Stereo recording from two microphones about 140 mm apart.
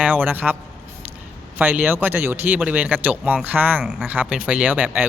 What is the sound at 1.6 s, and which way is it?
Speech, 15° right (ahead or behind).